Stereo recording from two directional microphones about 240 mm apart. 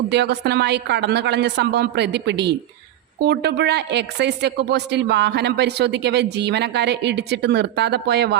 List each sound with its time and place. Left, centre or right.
0.1 s speech: right